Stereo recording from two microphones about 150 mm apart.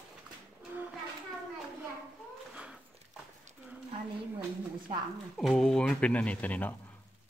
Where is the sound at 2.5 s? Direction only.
5° right (ahead or behind).